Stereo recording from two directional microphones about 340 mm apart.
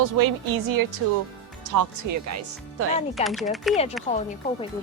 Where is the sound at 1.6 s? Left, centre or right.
Right.